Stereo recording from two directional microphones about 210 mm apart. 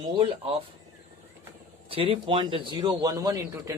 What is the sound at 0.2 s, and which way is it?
Speech, 25° right (ahead or behind).